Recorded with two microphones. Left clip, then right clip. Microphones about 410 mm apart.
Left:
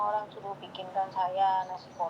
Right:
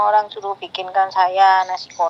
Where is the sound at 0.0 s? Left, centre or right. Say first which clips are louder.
Right 15 dB; right.